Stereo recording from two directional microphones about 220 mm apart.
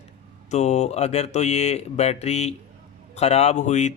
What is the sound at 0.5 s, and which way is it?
Speech, 30° left (ahead or behind).